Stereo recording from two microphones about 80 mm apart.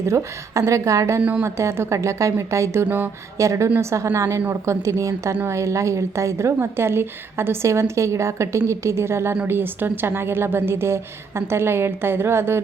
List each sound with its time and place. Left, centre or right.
0.0 s a woman's voice: right
1.2 s a woman's voice: centre
1.5 s a woman's voice: right